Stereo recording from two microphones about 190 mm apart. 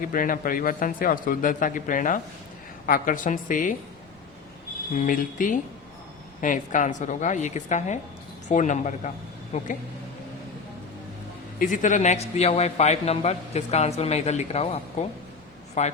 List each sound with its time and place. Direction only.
0.1 s a man's voice: 45° left (ahead or behind)
4.9 s a man's voice: 45° left (ahead or behind)
11.6 s a man's voice: 45° left (ahead or behind)